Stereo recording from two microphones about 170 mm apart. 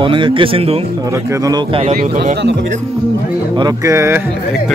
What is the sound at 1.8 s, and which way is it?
Speech, 45° right (ahead or behind).